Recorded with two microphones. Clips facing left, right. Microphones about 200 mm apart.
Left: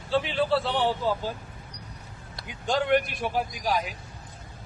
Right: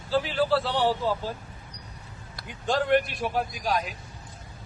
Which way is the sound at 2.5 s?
Centre (ahead or behind).